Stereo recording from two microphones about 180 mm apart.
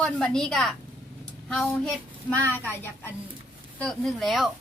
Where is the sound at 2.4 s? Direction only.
10° left (ahead or behind).